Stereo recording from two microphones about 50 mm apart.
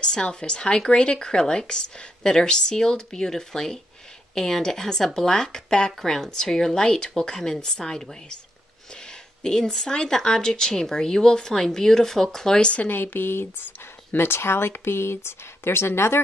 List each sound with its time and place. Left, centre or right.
0.0 s speech: centre
12.8 s speech: left